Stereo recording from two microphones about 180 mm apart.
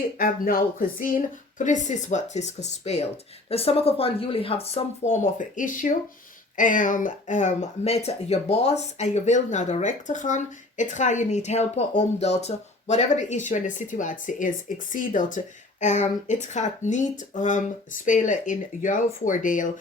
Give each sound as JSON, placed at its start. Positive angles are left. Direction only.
{"t": 0.2, "sound": "speech", "side_deg": 50}